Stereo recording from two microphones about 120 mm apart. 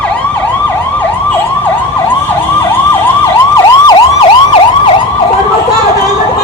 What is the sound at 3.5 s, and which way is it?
Emergency vehicle, 30° left (ahead or behind).